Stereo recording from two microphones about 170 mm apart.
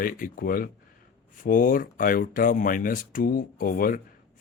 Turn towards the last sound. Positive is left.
turn(degrees=55)  # may be behind; listen again after turning